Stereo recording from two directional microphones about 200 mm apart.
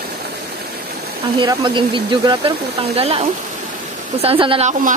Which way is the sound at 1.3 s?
25° right (ahead or behind).